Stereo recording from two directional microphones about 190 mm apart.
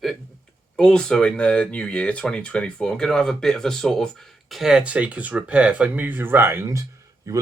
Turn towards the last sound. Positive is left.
turn(degrees=-15)  # may be behind; listen again after turning